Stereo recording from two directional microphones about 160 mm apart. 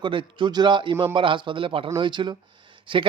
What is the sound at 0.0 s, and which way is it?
A man's voice, 30° right (ahead or behind).